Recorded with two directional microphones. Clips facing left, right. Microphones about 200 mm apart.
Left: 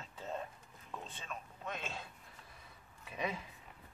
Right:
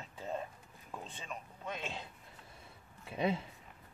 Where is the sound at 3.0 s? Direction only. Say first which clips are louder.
Right 6 dB; 30° right (ahead or behind).